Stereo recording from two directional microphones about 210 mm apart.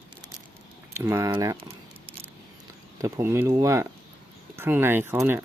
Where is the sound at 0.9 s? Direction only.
10° right (ahead or behind).